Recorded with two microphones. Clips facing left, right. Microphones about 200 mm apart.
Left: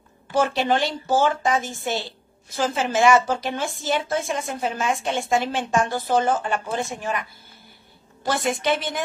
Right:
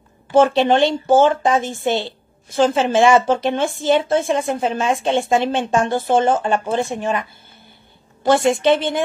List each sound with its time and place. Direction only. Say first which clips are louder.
0.3 s a woman's voice: right 7 dB; 25° right (ahead or behind)
8.3 s a woman's voice: right 8 dB; 25° right (ahead or behind)